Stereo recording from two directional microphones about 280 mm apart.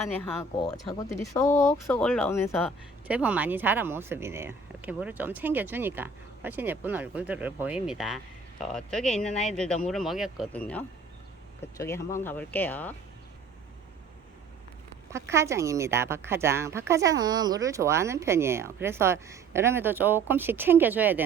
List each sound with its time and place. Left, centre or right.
0.0 s speech: centre
1.5 s speech: left
1.9 s speech: centre
3.1 s speech: centre
15.1 s speech: centre